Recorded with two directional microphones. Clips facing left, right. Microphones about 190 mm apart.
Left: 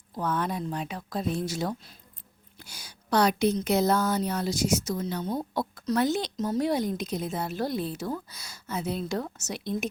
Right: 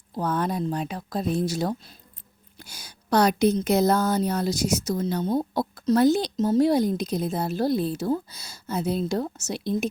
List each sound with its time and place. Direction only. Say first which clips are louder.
0.2 s a woman's voice: right 4 dB; 40° right (ahead or behind)
6.3 s a woman's voice: right 6 dB; 25° right (ahead or behind)